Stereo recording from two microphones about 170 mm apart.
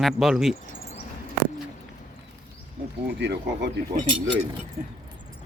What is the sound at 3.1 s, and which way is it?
Speech, 90° right.